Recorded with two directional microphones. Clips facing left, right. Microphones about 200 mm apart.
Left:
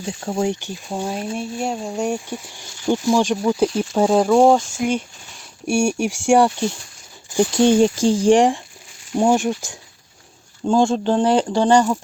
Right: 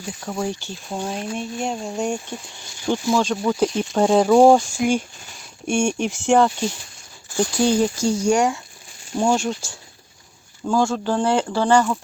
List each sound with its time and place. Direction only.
0.0 s speech: 30° left (ahead or behind); by 4.6 s centre (ahead or behind)
5.6 s speech: 10° left (ahead or behind); by 8.6 s 30° left (ahead or behind)
9.1 s speech: 15° left (ahead or behind)